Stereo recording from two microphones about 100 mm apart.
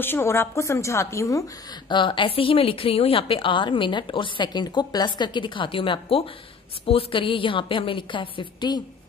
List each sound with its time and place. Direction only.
0.0 s a woman's voice: 25° left (ahead or behind)
1.9 s a woman's voice: 55° left (ahead or behind)
4.5 s a woman's voice: 45° left (ahead or behind)